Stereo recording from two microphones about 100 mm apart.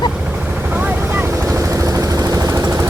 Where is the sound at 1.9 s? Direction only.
35° right (ahead or behind).